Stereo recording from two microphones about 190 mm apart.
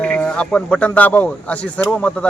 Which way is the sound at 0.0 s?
5° left (ahead or behind).